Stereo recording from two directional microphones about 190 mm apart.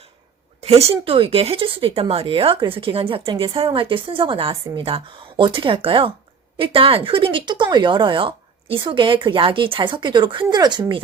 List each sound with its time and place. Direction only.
0.6 s speech: 35° right (ahead or behind)